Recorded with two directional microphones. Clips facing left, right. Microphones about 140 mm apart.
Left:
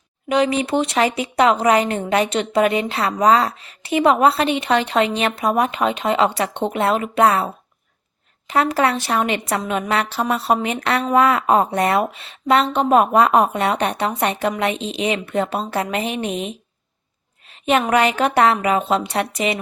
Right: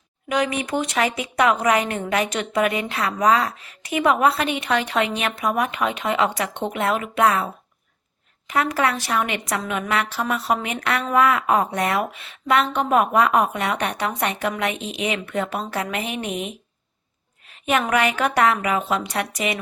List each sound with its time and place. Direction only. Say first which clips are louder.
0.3 s a woman's voice: left 5 dB; 30° left (ahead or behind)
8.4 s a woman's voice: left 4 dB; 30° left (ahead or behind)
17.7 s a woman's voice: left 4 dB; 30° left (ahead or behind)